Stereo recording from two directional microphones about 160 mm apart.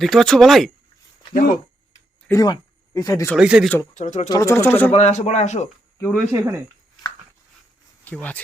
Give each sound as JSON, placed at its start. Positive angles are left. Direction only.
{"t": 0.0, "sound": "speech", "side_deg": 0}
{"t": 1.3, "sound": "speech", "side_deg": 60}
{"t": 2.3, "sound": "speech", "side_deg": 25}
{"t": 3.3, "sound": "speech", "side_deg": -5}
{"t": 3.9, "sound": "speech", "side_deg": 50}
{"t": 4.3, "sound": "speech", "side_deg": 20}
{"t": 4.9, "sound": "speech", "side_deg": 45}
{"t": 6.0, "sound": "speech", "side_deg": 5}
{"t": 6.3, "sound": "speech", "side_deg": -15}
{"t": 8.0, "sound": "speech", "side_deg": 10}